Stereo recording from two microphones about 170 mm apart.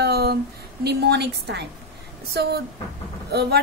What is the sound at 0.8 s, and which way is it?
Speech, 80° right.